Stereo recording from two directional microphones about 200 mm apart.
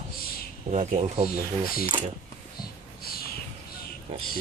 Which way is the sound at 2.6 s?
50° left (ahead or behind).